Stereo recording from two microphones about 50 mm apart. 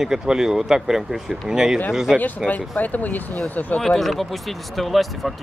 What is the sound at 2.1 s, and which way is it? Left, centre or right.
Speech, left.